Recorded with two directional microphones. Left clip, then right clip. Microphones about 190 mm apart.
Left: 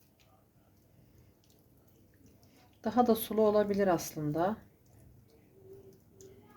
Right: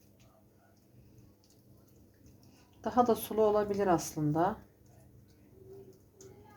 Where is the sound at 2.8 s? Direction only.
40° left (ahead or behind).